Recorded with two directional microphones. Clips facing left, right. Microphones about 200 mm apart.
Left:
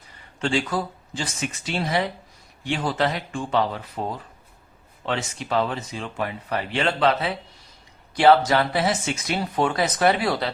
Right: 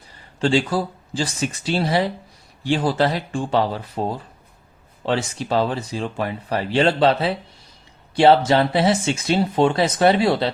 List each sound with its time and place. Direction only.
0.3 s speech: 35° right (ahead or behind)